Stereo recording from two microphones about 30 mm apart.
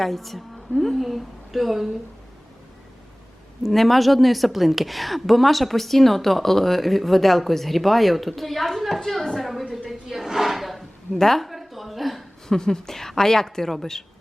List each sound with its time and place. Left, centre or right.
0.0 s a woman's voice: centre
3.6 s a woman's voice: centre
10.1 s a sound: centre
11.2 s a woman's voice: centre
11.4 s a sound: centre
12.5 s a woman's voice: left